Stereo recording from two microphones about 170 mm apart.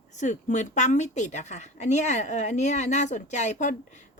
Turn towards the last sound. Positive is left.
turn(degrees=45)  # may be behind; listen again after turning